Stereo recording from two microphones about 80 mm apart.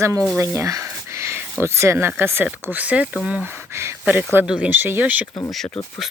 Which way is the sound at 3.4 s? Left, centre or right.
Right.